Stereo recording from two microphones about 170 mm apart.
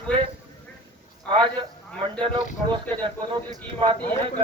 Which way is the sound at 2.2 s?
30° right (ahead or behind).